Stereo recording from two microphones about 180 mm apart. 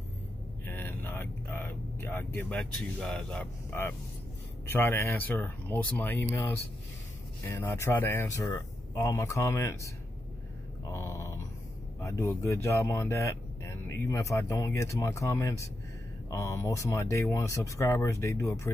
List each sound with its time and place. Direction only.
0.7 s vehicle: 10° left (ahead or behind)
4.6 s speech: 15° left (ahead or behind)
10.9 s a sound: 15° left (ahead or behind)
12.0 s speech: 15° left (ahead or behind)